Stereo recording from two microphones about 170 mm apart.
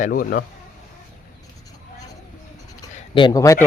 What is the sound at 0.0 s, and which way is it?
Speech, 55° left (ahead or behind).